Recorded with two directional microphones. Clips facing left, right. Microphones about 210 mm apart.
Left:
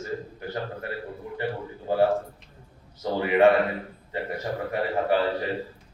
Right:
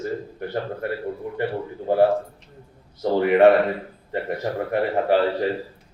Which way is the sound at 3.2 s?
60° right (ahead or behind).